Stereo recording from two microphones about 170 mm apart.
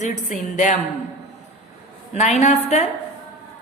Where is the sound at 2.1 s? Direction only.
40° left (ahead or behind).